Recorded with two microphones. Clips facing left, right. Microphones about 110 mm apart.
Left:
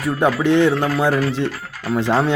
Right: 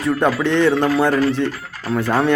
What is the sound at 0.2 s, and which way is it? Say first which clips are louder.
A man's voice: left 4 dB; 15° left (ahead or behind).